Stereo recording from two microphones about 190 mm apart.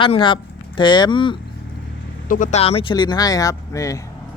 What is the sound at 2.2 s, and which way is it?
Speech, 45° left (ahead or behind).